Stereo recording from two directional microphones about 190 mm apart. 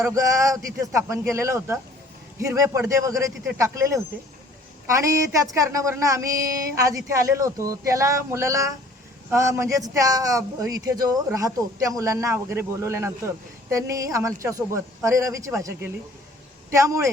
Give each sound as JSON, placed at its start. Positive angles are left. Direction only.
{"t": 0.0, "sound": "a man's voice", "side_deg": -20}